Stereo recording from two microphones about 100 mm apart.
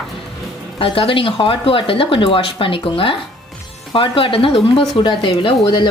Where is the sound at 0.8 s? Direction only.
65° left (ahead or behind).